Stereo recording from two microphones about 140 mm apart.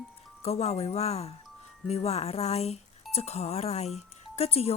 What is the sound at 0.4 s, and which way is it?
Speech, 45° left (ahead or behind).